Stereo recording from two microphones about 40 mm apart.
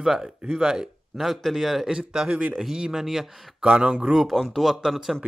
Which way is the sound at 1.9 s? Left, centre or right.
Right.